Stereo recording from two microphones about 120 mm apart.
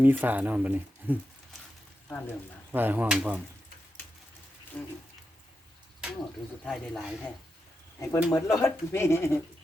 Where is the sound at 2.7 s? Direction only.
15° right (ahead or behind).